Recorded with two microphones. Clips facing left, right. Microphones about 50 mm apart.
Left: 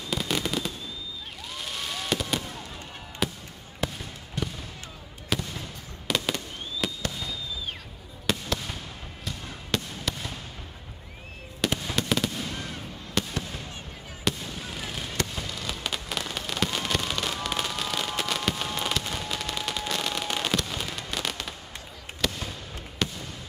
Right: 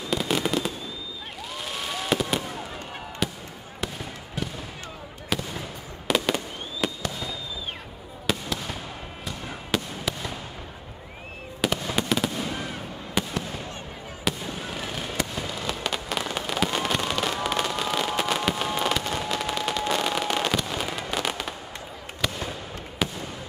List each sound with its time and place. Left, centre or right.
0.1 s fireworks: centre
3.2 s a sound: centre
3.8 s fireworks: centre
11.6 s fireworks: centre
15.8 s fireworks: centre